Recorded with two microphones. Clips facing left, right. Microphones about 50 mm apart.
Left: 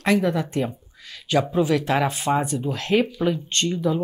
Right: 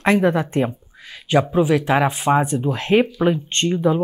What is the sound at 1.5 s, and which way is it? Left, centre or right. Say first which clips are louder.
Speech: right 4 dB; centre.